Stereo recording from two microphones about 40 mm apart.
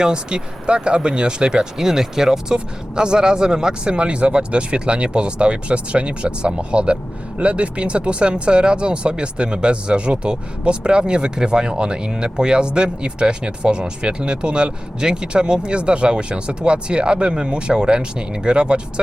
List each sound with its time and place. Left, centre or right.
0.0 s speech: right